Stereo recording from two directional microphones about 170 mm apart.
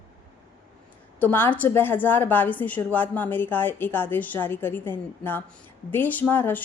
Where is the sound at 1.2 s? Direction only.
10° left (ahead or behind).